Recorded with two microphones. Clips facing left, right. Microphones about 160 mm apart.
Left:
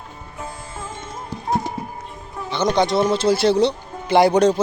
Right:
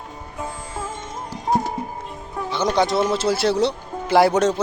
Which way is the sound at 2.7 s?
5° right (ahead or behind).